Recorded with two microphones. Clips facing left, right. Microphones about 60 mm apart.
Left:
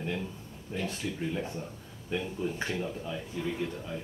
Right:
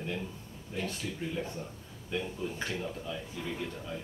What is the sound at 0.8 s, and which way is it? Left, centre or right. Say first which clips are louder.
Speech: left 4 dB; centre.